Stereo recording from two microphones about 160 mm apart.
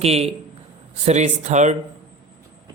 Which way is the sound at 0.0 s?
40° right (ahead or behind).